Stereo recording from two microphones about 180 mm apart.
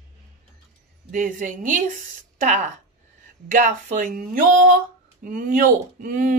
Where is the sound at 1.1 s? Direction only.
50° right (ahead or behind).